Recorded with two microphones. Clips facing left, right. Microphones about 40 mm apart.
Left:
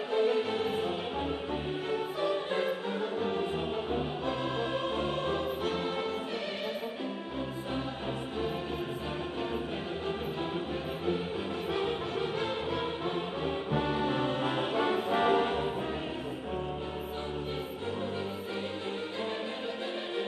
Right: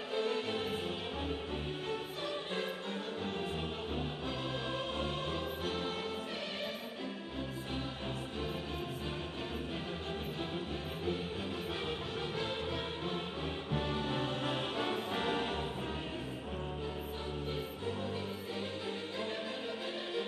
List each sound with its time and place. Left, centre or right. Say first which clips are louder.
0.1 s music: left 7 dB; centre
11.7 s music: left 7 dB; centre
13.7 s music: left 5 dB; centre